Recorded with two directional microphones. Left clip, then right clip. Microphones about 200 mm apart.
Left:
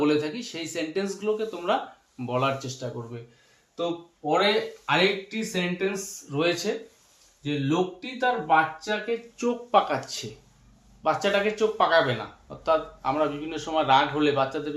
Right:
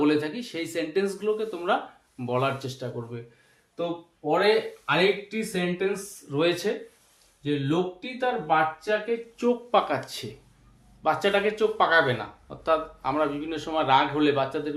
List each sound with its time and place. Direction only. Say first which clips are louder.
0.0 s speech: even; 25° right (ahead or behind)
4.2 s speech: right 1 dB; 15° right (ahead or behind)
7.4 s speech: even; 20° right (ahead or behind)